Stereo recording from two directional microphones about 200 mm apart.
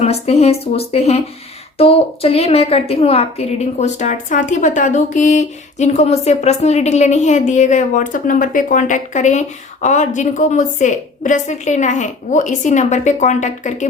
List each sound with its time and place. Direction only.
0.0 s a woman's voice: 30° left (ahead or behind)